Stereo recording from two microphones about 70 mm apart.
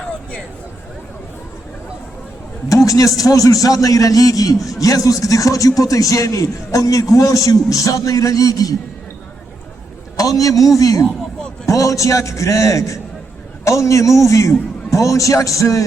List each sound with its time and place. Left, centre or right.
2.6 s a man's voice: left
10.2 s a man's voice: left